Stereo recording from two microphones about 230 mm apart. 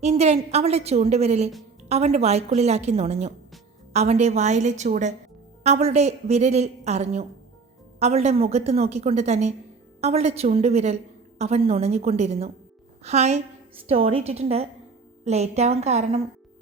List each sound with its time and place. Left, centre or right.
0.0 s a woman's voice: right